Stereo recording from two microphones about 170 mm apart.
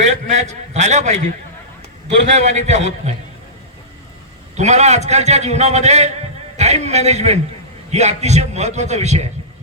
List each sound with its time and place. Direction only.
0.4 s a man's voice: 45° right (ahead or behind)
4.5 s a man's voice: 40° right (ahead or behind)